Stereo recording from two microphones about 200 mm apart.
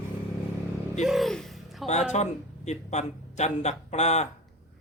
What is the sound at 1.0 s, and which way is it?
Speech, centre (ahead or behind).